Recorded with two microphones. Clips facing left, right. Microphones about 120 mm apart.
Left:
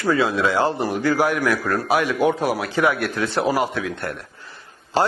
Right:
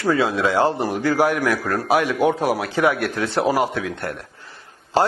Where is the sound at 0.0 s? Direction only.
45° right (ahead or behind).